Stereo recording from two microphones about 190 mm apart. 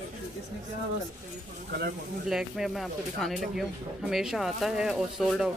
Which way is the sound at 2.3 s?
Centre (ahead or behind).